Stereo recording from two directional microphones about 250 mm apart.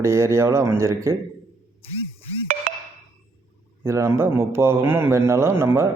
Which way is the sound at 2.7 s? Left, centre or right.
Right.